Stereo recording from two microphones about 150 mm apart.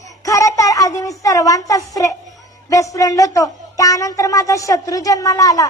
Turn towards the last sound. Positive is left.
turn(degrees=20)  # may be behind; listen again after turning